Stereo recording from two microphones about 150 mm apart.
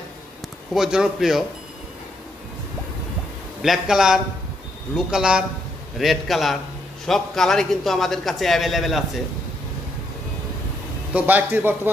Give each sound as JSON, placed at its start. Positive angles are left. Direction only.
{"t": 0.7, "sound": "a man's voice", "side_deg": -5}
{"t": 3.6, "sound": "a man's voice", "side_deg": 0}
{"t": 11.1, "sound": "a man's voice", "side_deg": -10}